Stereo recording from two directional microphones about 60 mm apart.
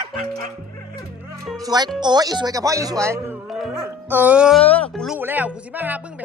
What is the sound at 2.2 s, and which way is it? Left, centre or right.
Speech, right.